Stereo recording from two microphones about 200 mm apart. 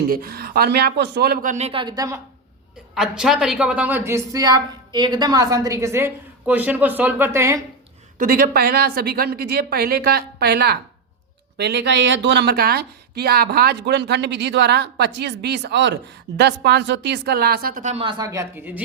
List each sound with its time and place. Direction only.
0.1 s speech: 50° right (ahead or behind); by 2.2 s 15° right (ahead or behind)
2.9 s speech: centre (ahead or behind)
8.2 s speech: 50° right (ahead or behind); by 18.8 s 10° right (ahead or behind)